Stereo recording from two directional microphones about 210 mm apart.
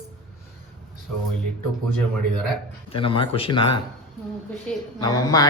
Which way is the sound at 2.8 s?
25° left (ahead or behind).